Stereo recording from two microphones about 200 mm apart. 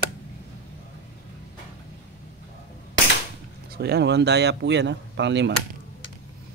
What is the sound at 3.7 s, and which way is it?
Speech, 55° right (ahead or behind).